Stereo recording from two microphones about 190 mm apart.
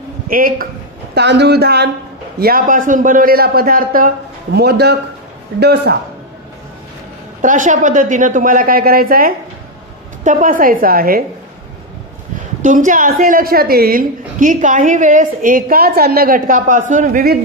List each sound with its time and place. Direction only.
0.3 s a woman's voice: 50° right (ahead or behind)
1.1 s a man's voice: 65° right (ahead or behind)
7.4 s a woman's voice: 45° right (ahead or behind)
12.6 s a woman's voice: 45° right (ahead or behind)